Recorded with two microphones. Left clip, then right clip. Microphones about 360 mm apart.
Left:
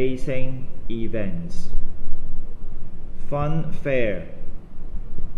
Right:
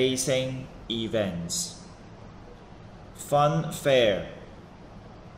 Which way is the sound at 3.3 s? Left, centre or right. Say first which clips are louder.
Right 5 dB; centre.